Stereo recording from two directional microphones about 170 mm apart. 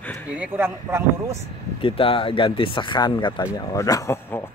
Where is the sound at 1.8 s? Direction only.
30° left (ahead or behind).